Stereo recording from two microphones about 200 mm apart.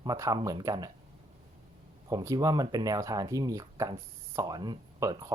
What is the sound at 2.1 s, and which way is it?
Speech, 20° right (ahead or behind).